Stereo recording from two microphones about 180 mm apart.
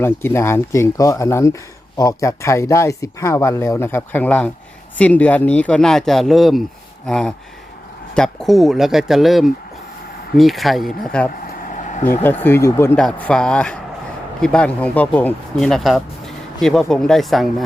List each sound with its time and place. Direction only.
0.0 s speech: 15° left (ahead or behind)
11.7 s vehicle: 45° left (ahead or behind)
12.2 s speech: 10° left (ahead or behind)